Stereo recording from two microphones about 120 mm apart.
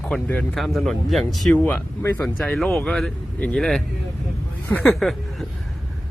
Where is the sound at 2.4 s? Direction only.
5° left (ahead or behind).